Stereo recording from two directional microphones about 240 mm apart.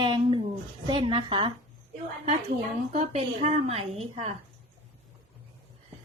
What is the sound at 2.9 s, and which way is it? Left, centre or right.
A woman's voice, right.